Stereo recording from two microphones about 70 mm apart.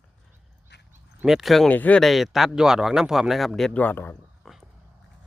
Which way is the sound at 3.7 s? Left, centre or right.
Left.